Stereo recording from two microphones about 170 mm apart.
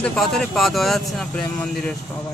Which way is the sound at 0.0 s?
Centre (ahead or behind).